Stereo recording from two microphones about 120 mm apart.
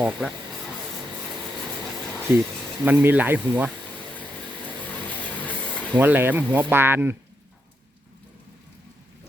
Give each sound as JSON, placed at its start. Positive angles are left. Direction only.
{"t": 0.2, "sound": "speech", "side_deg": -5}
{"t": 2.3, "sound": "speech", "side_deg": -20}
{"t": 4.8, "sound": "vehicle", "side_deg": 10}
{"t": 5.9, "sound": "speech", "side_deg": -15}